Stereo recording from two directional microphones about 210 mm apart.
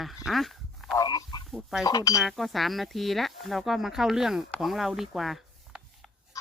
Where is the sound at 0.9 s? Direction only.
15° left (ahead or behind).